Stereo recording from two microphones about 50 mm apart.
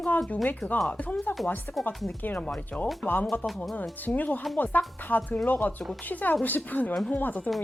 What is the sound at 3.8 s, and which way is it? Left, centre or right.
A woman's voice, left.